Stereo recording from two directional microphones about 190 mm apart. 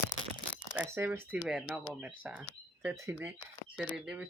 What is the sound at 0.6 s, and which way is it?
Speech, 10° right (ahead or behind).